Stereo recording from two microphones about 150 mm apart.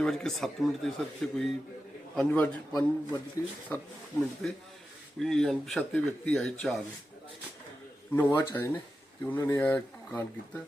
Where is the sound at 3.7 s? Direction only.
15° left (ahead or behind).